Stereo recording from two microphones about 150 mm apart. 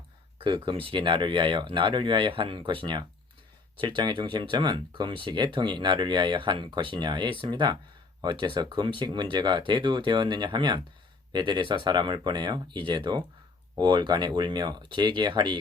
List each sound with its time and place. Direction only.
0.3 s speech: 35° right (ahead or behind)